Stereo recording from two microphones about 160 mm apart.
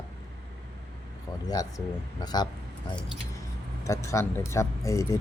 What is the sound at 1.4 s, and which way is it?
Speech, 25° left (ahead or behind).